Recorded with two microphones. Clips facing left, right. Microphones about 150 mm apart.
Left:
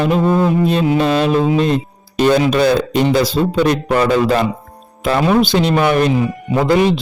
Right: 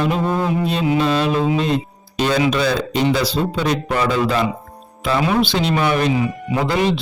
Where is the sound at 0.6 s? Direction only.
50° left (ahead or behind).